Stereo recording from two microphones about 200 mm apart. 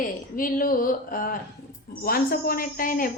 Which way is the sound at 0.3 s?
45° left (ahead or behind).